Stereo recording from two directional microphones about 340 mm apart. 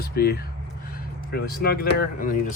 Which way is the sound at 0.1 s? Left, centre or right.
Left.